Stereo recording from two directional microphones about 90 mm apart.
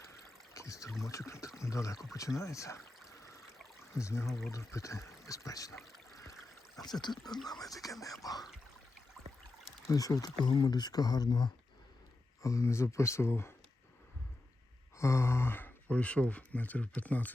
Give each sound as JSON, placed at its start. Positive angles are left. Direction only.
{"t": 0.5, "sound": "trickle", "side_deg": 35}
{"t": 1.0, "sound": "speech", "side_deg": 35}
{"t": 3.9, "sound": "speech", "side_deg": 30}
{"t": 4.3, "sound": "speech", "side_deg": 0}
{"t": 4.5, "sound": "speech", "side_deg": 35}
{"t": 6.8, "sound": "speech", "side_deg": 50}
{"t": 9.9, "sound": "speech", "side_deg": 45}
{"t": 12.4, "sound": "speech", "side_deg": 35}
{"t": 14.9, "sound": "speech", "side_deg": 30}